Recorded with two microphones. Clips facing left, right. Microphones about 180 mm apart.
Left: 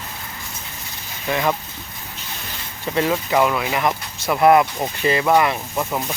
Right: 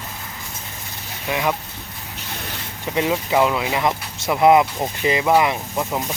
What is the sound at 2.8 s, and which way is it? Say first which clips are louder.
Speech: left 1 dB; 15° right (ahead or behind).